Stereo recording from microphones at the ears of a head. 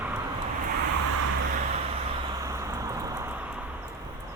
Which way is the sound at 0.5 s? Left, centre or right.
Right.